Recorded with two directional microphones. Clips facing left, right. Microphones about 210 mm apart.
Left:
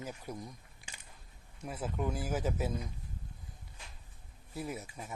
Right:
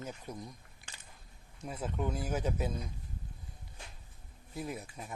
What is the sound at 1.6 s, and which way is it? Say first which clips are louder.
Speech: even; 5° left (ahead or behind).